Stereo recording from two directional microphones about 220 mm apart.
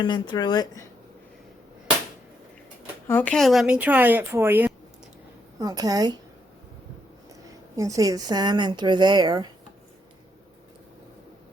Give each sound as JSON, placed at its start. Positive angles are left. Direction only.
{"t": 0.0, "sound": "speech", "side_deg": 20}
{"t": 3.1, "sound": "speech", "side_deg": 5}
{"t": 7.8, "sound": "speech", "side_deg": -15}